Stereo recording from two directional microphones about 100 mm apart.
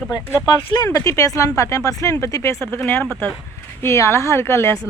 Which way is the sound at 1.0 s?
30° left (ahead or behind).